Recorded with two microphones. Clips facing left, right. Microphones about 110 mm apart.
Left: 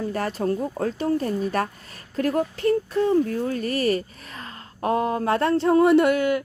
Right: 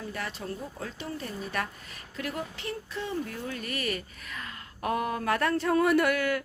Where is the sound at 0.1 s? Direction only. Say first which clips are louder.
Left 11 dB; 45° left (ahead or behind).